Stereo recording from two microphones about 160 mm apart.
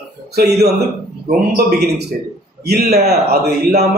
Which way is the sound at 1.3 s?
90° right.